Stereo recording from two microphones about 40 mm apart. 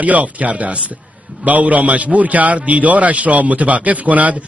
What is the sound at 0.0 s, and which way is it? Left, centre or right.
A man's voice, right.